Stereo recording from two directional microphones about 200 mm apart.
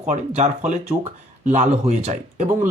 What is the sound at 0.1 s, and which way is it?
Speech, 35° right (ahead or behind).